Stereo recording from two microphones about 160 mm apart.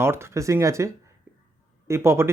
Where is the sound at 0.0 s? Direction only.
15° right (ahead or behind).